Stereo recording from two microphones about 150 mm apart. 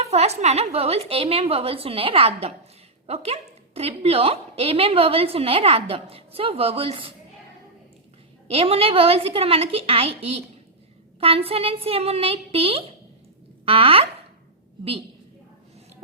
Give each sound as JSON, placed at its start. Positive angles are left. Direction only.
{"t": 0.0, "sound": "a woman's voice", "side_deg": -45}
{"t": 8.4, "sound": "a woman's voice", "side_deg": -40}